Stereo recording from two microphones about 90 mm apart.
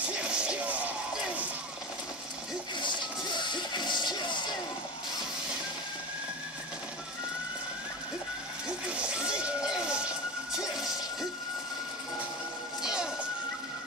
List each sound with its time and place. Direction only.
0.2 s music: 10° right (ahead or behind)
2.8 s music: 60° left (ahead or behind)
8.6 s music: 10° right (ahead or behind)
12.8 s music: 5° right (ahead or behind)